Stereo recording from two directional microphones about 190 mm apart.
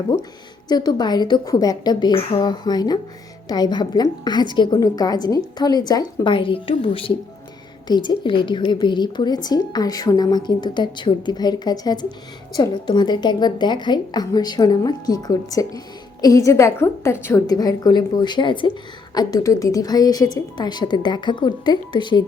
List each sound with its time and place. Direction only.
0.7 s a woman's voice: 20° left (ahead or behind)